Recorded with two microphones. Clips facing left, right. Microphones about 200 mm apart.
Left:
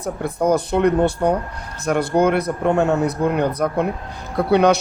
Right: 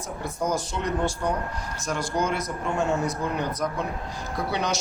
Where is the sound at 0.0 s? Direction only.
60° left (ahead or behind).